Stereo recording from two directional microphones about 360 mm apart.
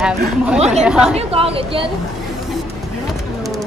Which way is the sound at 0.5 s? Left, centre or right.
Centre.